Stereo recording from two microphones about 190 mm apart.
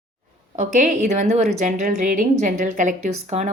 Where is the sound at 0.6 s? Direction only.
40° right (ahead or behind).